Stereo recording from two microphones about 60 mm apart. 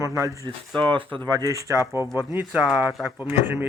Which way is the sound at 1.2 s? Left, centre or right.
Right.